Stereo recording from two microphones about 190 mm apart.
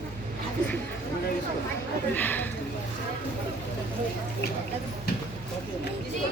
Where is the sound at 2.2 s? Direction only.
10° left (ahead or behind).